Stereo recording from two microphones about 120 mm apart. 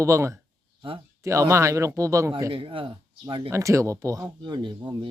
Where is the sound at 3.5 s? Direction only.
25° right (ahead or behind).